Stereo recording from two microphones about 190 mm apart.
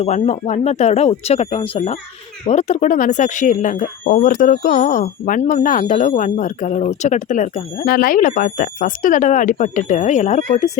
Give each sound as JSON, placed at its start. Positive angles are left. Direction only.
{"t": 0.0, "sound": "speech", "side_deg": 35}